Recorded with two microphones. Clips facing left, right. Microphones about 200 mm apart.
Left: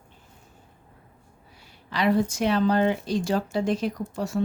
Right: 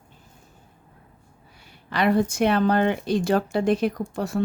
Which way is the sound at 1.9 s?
60° right (ahead or behind).